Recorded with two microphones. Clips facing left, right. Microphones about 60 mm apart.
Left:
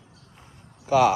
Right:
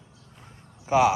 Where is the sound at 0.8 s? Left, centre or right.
Centre.